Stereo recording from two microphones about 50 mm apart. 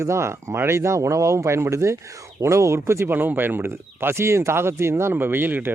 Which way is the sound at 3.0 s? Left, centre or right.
Right.